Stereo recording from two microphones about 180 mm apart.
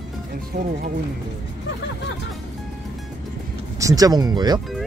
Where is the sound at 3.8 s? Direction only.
20° right (ahead or behind).